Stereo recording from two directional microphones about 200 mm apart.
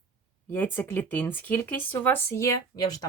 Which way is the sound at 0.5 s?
10° left (ahead or behind).